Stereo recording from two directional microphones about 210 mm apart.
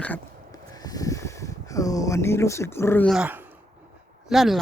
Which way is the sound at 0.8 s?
15° left (ahead or behind).